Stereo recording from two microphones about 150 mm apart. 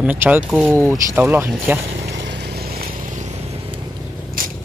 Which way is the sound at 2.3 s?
90° right.